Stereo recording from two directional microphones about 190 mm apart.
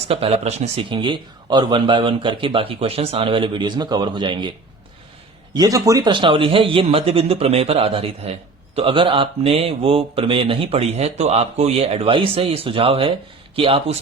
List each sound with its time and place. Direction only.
0.1 s a man's voice: 30° right (ahead or behind)
5.5 s a man's voice: 20° right (ahead or behind)